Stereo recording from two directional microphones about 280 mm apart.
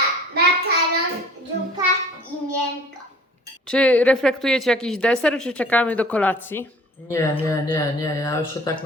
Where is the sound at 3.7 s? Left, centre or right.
Centre.